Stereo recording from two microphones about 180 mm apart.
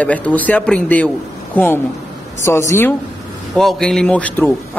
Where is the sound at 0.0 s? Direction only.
10° left (ahead or behind).